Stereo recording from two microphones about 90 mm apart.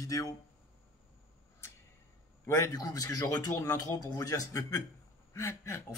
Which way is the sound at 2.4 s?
35° left (ahead or behind).